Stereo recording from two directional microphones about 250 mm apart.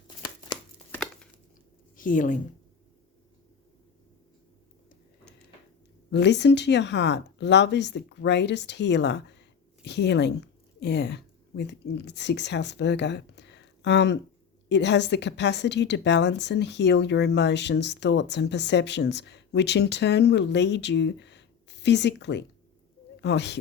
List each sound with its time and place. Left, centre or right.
0.2 s a sound: centre
0.9 s tearing: centre
2.0 s a woman's voice: left
6.1 s a woman's voice: left